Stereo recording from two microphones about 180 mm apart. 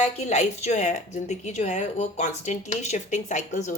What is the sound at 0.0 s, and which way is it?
A woman's voice, 35° left (ahead or behind).